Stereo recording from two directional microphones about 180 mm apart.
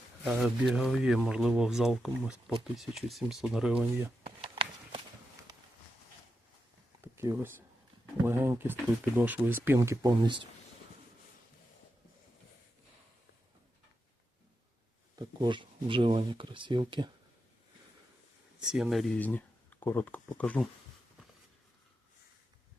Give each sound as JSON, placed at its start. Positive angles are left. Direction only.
{"t": 0.3, "sound": "speech", "side_deg": -5}
{"t": 4.4, "sound": "a sound", "side_deg": -30}
{"t": 7.0, "sound": "a sound", "side_deg": -15}
{"t": 8.2, "sound": "speech", "side_deg": -15}
{"t": 15.2, "sound": "speech", "side_deg": -25}
{"t": 18.7, "sound": "speech", "side_deg": 0}